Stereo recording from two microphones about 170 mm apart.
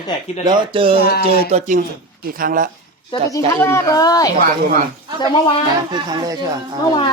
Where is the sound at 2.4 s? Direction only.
55° right (ahead or behind).